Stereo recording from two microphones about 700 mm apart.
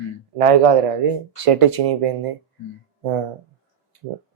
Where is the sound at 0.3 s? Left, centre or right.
Right.